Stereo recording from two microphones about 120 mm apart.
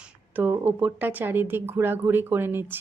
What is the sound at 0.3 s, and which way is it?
A woman's voice, 15° right (ahead or behind).